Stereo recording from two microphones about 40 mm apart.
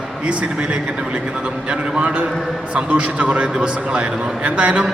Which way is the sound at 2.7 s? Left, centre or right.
Right.